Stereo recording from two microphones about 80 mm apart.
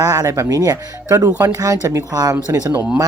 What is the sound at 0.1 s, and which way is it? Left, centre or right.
Speech, right.